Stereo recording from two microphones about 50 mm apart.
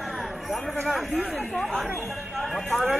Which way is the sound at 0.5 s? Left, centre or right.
Centre.